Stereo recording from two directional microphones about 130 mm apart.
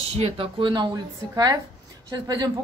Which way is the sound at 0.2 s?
45° right (ahead or behind).